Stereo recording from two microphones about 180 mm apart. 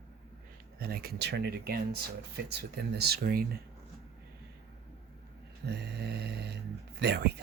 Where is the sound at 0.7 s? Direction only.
60° right (ahead or behind).